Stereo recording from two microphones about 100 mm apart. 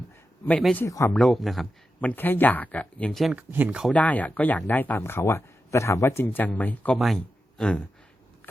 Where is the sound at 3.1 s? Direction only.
Centre (ahead or behind).